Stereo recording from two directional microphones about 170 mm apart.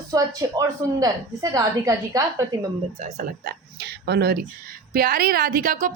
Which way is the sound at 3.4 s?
75° right (ahead or behind).